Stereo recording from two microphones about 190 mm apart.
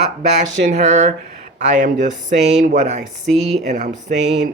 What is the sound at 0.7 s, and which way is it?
Speech, 35° right (ahead or behind).